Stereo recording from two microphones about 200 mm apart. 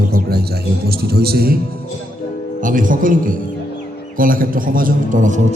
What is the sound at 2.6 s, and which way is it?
A man's voice, 40° right (ahead or behind).